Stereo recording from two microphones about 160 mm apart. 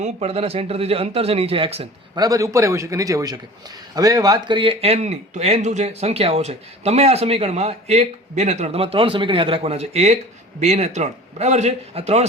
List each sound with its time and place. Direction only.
0.0 s speech: 40° right (ahead or behind)
2.2 s a man's voice: 20° right (ahead or behind); by 12.2 s 40° right (ahead or behind)